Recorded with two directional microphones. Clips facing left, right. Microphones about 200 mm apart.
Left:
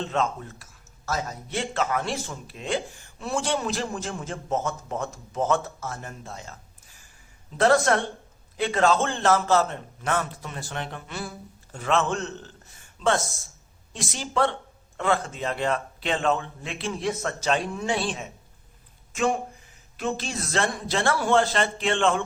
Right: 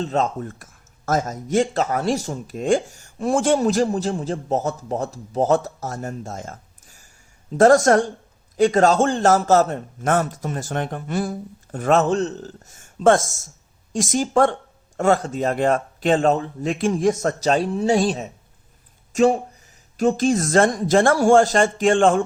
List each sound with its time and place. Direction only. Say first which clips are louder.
0.0 s a man's voice: right 5 dB; 40° right (ahead or behind)